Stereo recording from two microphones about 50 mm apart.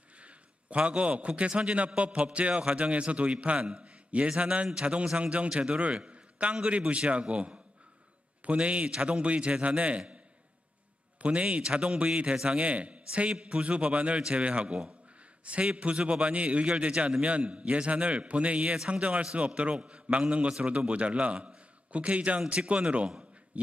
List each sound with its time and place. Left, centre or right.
0.2 s a man's voice: right
3.8 s a sound: right
5.1 s a man's voice: right
11.2 s a man's voice: right